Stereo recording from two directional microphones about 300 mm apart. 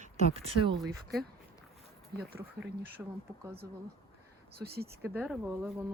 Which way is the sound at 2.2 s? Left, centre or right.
Right.